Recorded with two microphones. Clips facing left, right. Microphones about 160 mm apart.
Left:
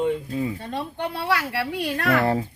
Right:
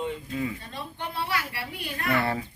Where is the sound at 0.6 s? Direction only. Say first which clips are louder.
Left 8 dB; 65° left (ahead or behind); by 2.2 s 85° left.